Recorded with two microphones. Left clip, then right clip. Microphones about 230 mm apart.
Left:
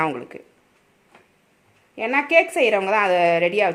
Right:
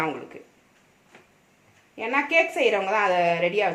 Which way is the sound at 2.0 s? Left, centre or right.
Left.